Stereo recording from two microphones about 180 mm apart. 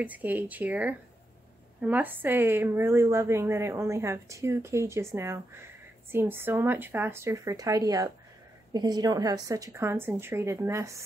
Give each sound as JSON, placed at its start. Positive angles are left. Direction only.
{"t": 0.0, "sound": "a woman's voice", "side_deg": -10}